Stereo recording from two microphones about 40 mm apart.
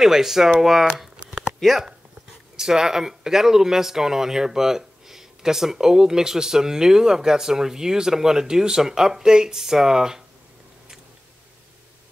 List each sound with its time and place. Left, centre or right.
0.0 s speech: centre
1.1 s a sound: right
1.6 s speech: centre
2.5 s speech: centre